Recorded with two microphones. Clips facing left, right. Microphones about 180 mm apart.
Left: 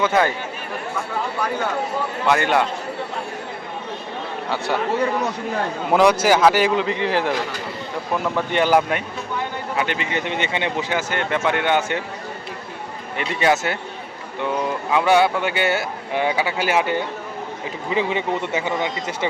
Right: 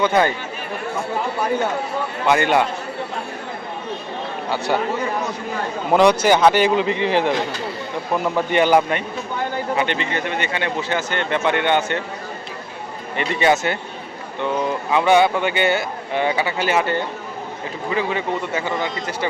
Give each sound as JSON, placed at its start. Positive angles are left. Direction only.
{"t": 0.0, "sound": "a man's voice", "side_deg": 5}
{"t": 2.2, "sound": "a man's voice", "side_deg": 0}
{"t": 4.4, "sound": "a man's voice", "side_deg": 0}
{"t": 5.9, "sound": "a man's voice", "side_deg": 5}
{"t": 13.1, "sound": "a man's voice", "side_deg": 5}